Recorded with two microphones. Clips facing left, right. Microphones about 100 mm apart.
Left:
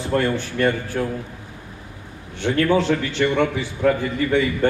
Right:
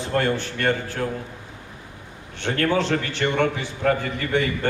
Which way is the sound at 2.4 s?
60° right (ahead or behind).